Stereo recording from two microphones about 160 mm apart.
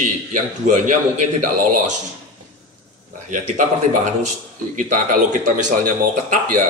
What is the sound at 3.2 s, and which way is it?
A man's voice, 55° right (ahead or behind).